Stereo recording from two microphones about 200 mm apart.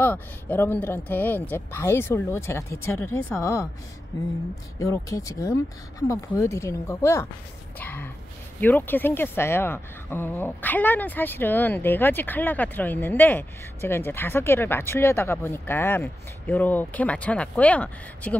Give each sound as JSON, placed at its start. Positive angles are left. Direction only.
{"t": 0.0, "sound": "speech", "side_deg": 10}
{"t": 4.7, "sound": "speech", "side_deg": 15}